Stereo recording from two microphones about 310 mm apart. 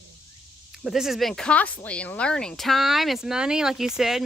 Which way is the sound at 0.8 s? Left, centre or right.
Centre.